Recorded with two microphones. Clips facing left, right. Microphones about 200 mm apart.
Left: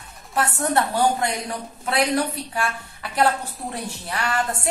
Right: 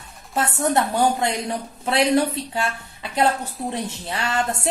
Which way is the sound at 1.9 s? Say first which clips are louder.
Right 3 dB; 25° right (ahead or behind).